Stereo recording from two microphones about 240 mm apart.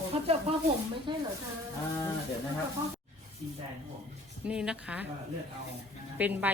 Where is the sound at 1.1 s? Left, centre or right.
Centre.